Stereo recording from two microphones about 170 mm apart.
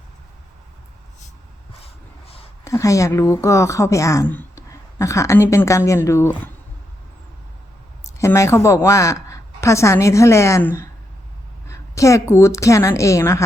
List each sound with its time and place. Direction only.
2.6 s speech: 20° left (ahead or behind)
8.0 s a woman's voice: 15° left (ahead or behind)
11.7 s speech: 20° left (ahead or behind)